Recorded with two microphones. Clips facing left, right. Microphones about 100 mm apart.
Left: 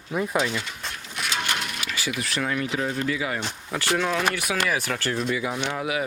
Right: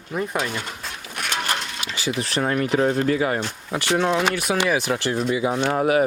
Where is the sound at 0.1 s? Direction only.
Centre (ahead or behind).